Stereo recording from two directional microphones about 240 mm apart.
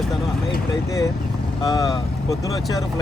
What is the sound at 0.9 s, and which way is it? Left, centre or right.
Speech, centre.